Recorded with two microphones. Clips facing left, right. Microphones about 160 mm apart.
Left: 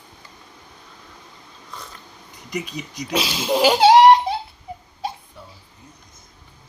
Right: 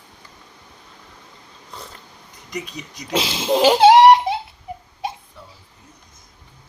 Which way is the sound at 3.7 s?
25° right (ahead or behind).